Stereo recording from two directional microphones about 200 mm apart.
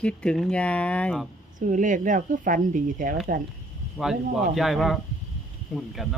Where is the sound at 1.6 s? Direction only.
40° right (ahead or behind).